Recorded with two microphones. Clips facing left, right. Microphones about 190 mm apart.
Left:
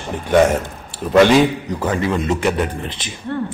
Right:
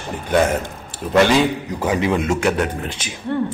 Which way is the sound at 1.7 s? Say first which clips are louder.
Right 1 dB; 10° right (ahead or behind).